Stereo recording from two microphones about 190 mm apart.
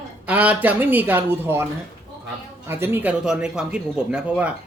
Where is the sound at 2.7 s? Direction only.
10° right (ahead or behind).